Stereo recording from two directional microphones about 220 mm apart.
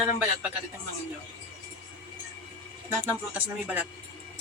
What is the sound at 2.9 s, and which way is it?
Speech, 5° right (ahead or behind).